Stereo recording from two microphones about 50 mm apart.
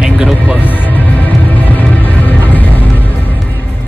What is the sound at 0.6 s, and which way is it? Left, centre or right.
Music, left.